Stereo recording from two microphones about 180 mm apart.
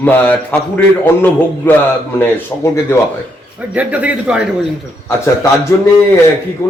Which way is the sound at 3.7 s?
10° right (ahead or behind).